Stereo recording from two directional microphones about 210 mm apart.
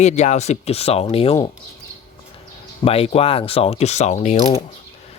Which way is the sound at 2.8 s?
30° left (ahead or behind).